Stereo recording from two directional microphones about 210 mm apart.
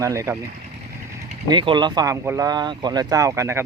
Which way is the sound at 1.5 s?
20° right (ahead or behind).